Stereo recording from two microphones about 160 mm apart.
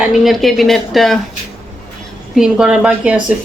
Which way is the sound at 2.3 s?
5° right (ahead or behind).